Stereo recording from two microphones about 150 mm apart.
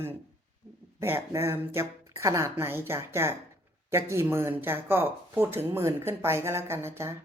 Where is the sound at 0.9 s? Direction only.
15° right (ahead or behind).